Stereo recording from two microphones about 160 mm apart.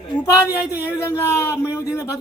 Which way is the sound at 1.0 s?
15° left (ahead or behind).